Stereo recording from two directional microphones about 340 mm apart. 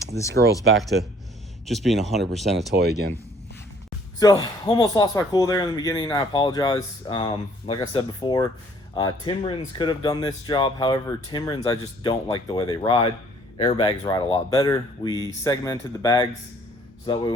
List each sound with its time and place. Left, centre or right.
0.1 s speech: right
0.8 s speech: centre
2.7 s speech: right
4.2 s speech: centre